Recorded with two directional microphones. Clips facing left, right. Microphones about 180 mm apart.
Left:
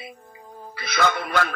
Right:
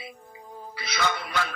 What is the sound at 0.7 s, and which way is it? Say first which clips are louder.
Speech: left 6 dB; 55° left (ahead or behind).